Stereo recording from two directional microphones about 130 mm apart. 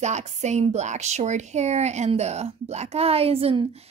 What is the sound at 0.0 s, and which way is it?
Speech, 60° right (ahead or behind).